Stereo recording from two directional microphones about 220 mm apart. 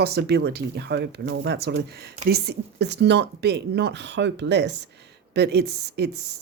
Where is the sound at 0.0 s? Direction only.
45° right (ahead or behind).